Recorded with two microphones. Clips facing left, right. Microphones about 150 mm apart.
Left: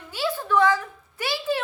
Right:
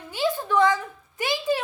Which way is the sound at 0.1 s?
15° right (ahead or behind).